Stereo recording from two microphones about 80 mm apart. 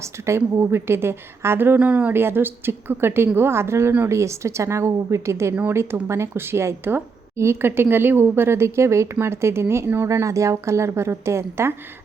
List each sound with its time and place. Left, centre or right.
0.0 s a woman's voice: right
1.8 s speech: centre
2.1 s a woman's voice: right